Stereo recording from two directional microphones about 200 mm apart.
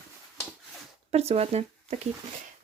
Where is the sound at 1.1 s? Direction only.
30° right (ahead or behind).